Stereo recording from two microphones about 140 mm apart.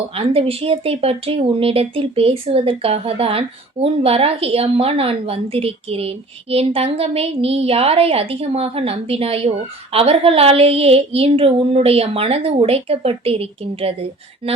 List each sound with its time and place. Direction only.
0.1 s speech: 45° right (ahead or behind)